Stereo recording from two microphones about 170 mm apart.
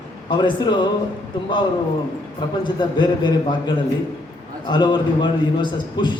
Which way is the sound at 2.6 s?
25° left (ahead or behind).